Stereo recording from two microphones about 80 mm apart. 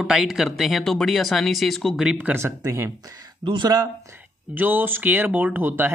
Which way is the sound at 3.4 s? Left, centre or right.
Right.